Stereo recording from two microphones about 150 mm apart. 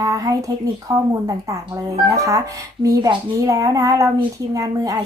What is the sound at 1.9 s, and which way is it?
Speech, 20° right (ahead or behind).